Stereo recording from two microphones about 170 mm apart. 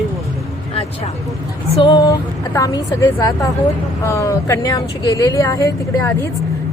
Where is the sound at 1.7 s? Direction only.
25° left (ahead or behind).